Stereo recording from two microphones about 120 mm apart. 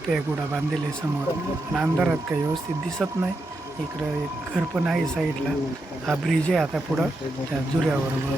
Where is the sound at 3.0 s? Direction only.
Centre (ahead or behind).